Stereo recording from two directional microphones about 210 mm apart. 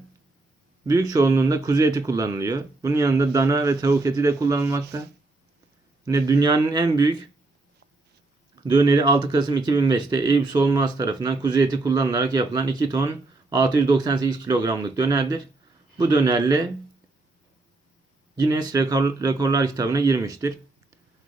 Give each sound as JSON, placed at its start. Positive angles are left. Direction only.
{"t": 0.9, "sound": "speech", "side_deg": -15}
{"t": 6.1, "sound": "speech", "side_deg": -15}
{"t": 8.7, "sound": "speech", "side_deg": -20}
{"t": 18.3, "sound": "speech", "side_deg": -20}